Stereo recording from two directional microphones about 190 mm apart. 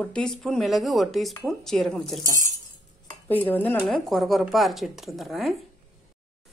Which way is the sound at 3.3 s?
10° left (ahead or behind).